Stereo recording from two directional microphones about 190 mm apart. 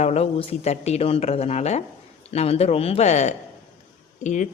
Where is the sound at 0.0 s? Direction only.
35° left (ahead or behind).